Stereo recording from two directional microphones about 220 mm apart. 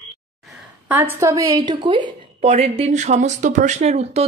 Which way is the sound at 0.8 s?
10° right (ahead or behind).